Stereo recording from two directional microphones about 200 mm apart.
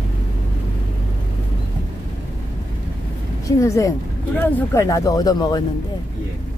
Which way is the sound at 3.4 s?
15° left (ahead or behind).